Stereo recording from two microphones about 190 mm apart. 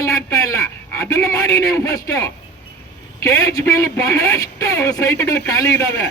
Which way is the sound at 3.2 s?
20° left (ahead or behind).